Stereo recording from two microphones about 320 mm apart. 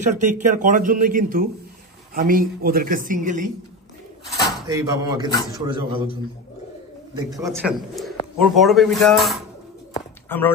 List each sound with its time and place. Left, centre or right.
0.0 s a man's voice: right
4.6 s speech: centre
7.2 s speech: centre
7.4 s speech: centre